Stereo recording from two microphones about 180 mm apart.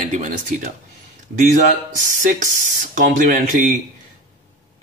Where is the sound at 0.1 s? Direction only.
45° right (ahead or behind).